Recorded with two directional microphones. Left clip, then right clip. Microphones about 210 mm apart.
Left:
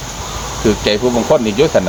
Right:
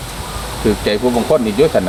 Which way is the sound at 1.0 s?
45° left (ahead or behind).